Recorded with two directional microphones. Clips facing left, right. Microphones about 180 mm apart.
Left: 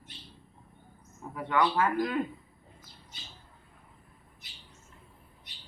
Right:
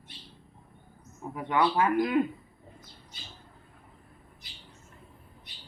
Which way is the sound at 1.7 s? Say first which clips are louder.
Right 3 dB; 15° right (ahead or behind).